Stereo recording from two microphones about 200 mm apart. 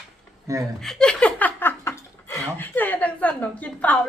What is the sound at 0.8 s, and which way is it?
Speech, 5° left (ahead or behind).